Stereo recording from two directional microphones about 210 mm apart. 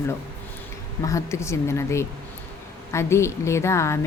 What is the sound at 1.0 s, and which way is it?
Speech, 15° left (ahead or behind).